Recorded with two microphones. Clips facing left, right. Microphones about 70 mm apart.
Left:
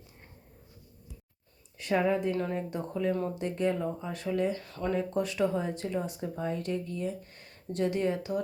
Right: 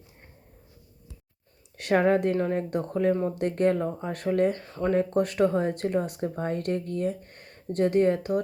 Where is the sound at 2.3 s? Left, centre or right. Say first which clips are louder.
Right 5 dB; right.